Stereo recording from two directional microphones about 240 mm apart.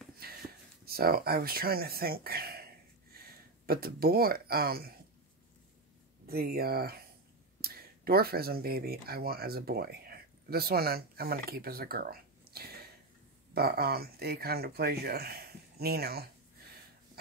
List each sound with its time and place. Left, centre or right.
0.2 s a sound: right
0.8 s speech: right
6.2 s speech: right